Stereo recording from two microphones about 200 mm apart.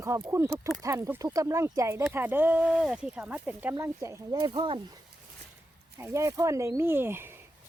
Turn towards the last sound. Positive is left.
turn(degrees=-10)  # may be behind; listen again after turning